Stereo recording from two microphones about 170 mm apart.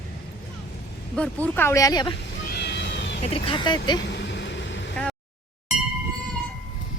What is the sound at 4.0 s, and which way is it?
Vehicle, 90° left.